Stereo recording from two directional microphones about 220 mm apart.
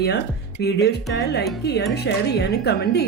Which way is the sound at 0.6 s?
50° left (ahead or behind).